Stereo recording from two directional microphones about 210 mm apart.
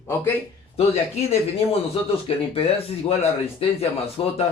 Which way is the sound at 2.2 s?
25° left (ahead or behind).